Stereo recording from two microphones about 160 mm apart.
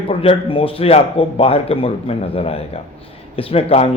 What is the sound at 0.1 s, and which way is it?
A man's voice, 35° left (ahead or behind).